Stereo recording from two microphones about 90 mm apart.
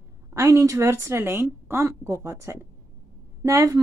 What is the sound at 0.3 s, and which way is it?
A woman's voice, 35° right (ahead or behind).